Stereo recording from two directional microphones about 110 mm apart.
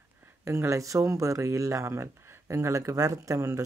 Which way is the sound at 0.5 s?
25° right (ahead or behind).